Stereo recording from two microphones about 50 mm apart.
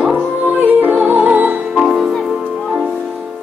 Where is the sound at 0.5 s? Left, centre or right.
Right.